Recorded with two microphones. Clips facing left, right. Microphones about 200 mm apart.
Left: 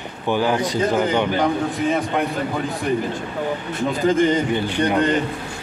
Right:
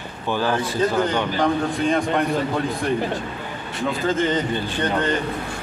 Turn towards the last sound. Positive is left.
turn(degrees=15)  # may be behind; listen again after turning